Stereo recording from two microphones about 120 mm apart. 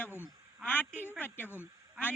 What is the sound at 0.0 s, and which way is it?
A woman's voice, 20° left (ahead or behind).